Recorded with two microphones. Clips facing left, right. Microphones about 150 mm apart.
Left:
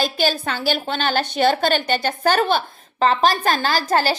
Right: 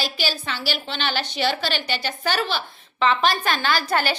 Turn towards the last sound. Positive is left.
turn(degrees=40)  # may be behind; listen again after turning